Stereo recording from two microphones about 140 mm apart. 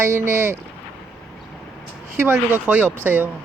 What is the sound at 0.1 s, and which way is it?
Speech, 20° right (ahead or behind).